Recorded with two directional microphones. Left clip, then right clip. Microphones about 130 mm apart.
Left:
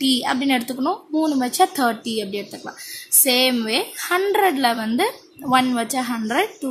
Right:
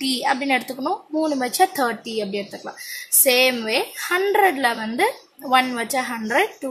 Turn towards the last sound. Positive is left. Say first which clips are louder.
# right 1 dB
turn(degrees=25)  # may be behind; listen again after turning